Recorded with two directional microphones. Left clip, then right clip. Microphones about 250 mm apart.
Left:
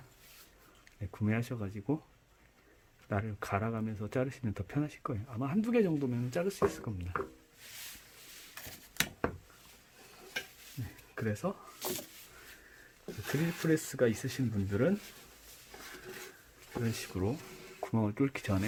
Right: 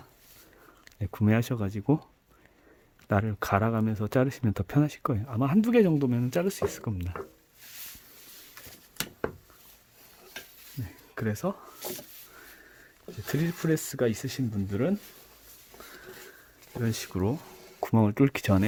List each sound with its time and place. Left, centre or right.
0.9 s speech: right
3.1 s speech: right
11.1 s speech: right
13.2 s speech: right
16.8 s speech: right